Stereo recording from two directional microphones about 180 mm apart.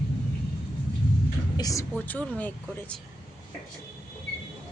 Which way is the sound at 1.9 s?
10° left (ahead or behind).